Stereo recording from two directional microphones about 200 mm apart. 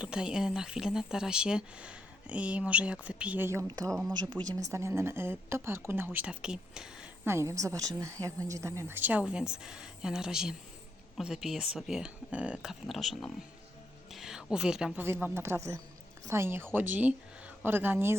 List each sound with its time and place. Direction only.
0.0 s speech: 5° right (ahead or behind)